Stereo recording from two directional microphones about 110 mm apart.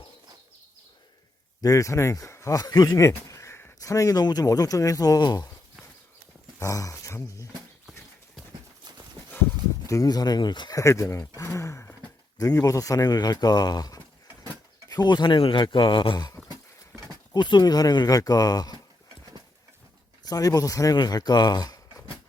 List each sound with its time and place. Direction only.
1.6 s speech: 30° left (ahead or behind)
6.6 s speech: 30° left (ahead or behind)
9.8 s speech: 30° left (ahead or behind)
10.8 s a sound: 30° left (ahead or behind)
12.4 s speech: 30° left (ahead or behind)
17.3 s speech: 40° left (ahead or behind)
20.2 s speech: 35° left (ahead or behind)